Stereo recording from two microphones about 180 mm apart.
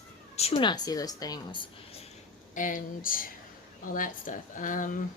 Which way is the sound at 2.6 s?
45° left (ahead or behind).